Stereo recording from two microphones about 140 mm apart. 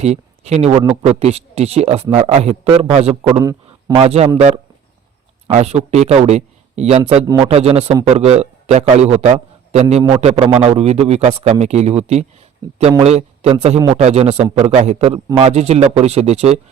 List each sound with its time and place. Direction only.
0.0 s a man's voice: 50° right (ahead or behind)
3.3 s a sound: 25° right (ahead or behind)
3.9 s a man's voice: 50° right (ahead or behind)